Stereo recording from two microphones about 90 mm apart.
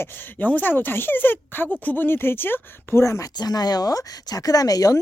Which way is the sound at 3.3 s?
50° left (ahead or behind).